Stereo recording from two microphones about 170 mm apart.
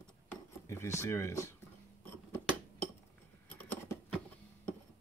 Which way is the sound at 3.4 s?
10° left (ahead or behind).